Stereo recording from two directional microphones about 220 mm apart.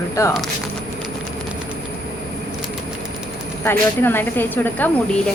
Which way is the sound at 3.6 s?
10° left (ahead or behind).